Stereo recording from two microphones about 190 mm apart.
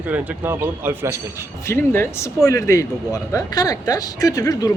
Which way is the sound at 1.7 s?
10° left (ahead or behind).